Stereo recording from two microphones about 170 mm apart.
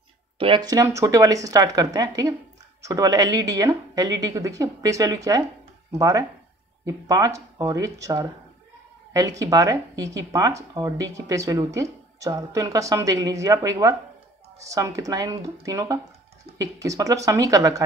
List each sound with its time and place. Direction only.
0.4 s speech: 30° right (ahead or behind)
9.4 s speech: 20° right (ahead or behind)